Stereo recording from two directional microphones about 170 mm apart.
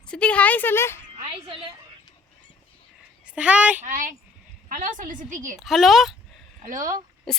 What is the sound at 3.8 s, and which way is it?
A woman's voice, 50° right (ahead or behind).